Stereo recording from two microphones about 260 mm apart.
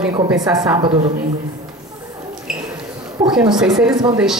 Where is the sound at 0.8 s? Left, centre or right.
Right.